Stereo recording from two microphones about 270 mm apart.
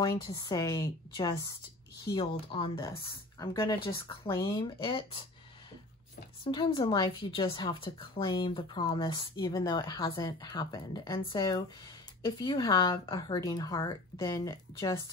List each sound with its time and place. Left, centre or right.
0.0 s speech: centre
6.5 s speech: centre